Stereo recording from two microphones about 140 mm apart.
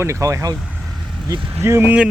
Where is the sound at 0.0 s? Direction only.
20° right (ahead or behind).